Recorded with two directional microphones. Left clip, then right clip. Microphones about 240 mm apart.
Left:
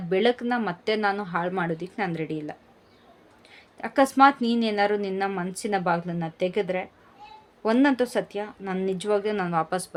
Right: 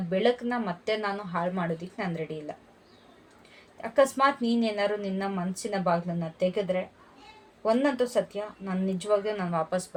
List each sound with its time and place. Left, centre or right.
0.1 s a woman's voice: left
3.8 s a woman's voice: left